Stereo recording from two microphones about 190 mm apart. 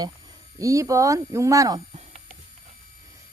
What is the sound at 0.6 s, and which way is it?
Speech, 15° right (ahead or behind).